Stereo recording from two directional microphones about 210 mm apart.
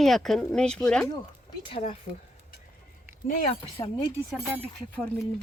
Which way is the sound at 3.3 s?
30° left (ahead or behind).